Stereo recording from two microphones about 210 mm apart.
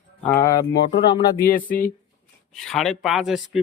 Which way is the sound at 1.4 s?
40° left (ahead or behind).